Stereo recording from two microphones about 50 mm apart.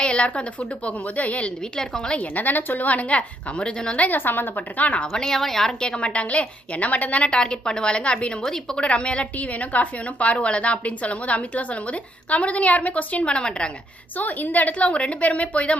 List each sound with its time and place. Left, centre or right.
0.0 s a sound: left
0.9 s a woman's voice: left; by 2.1 s centre
2.1 s a woman's voice: left
4.2 s a woman's voice: left
4.8 s a woman's voice: left
5.1 s a woman's voice: centre
5.8 s a woman's voice: left
7.3 s a woman's voice: centre
8.4 s a woman's voice: centre
14.2 s a woman's voice: left